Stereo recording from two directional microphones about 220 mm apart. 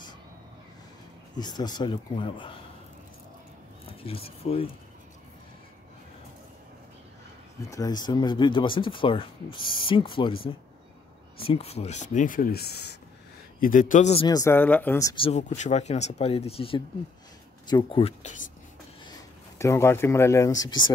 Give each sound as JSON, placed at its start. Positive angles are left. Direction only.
{"t": 1.3, "sound": "speech", "side_deg": 20}
{"t": 4.0, "sound": "speech", "side_deg": 25}
{"t": 7.7, "sound": "speech", "side_deg": 20}
{"t": 14.2, "sound": "speech", "side_deg": 15}
{"t": 19.6, "sound": "speech", "side_deg": 10}